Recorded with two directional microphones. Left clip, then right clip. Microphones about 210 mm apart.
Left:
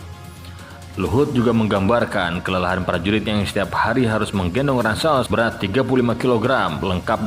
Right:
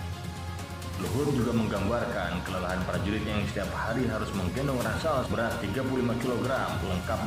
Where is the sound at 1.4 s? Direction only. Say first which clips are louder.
Left 11 dB; 45° left (ahead or behind).